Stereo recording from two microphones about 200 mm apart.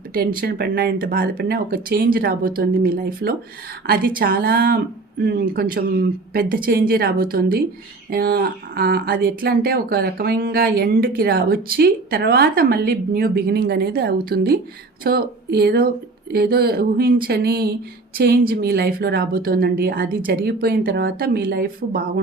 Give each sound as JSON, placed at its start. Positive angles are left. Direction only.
{"t": 0.1, "sound": "speech", "side_deg": -45}